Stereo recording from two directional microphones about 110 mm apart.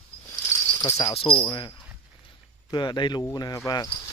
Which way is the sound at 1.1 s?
55° left (ahead or behind).